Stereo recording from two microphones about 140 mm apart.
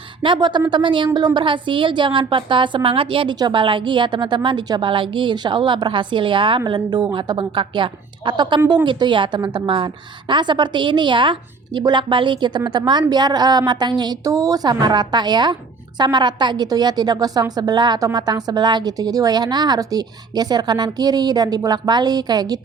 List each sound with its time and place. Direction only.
0.2 s a woman's voice: 35° right (ahead or behind)